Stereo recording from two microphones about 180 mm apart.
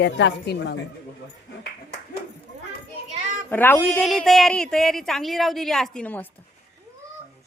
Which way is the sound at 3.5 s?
10° left (ahead or behind).